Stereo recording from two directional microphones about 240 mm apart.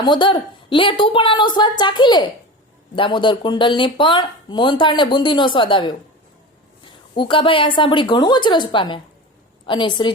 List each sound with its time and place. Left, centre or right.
0.0 s speech: centre